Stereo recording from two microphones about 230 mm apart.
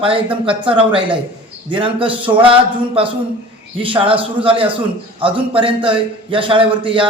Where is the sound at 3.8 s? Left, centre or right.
Right.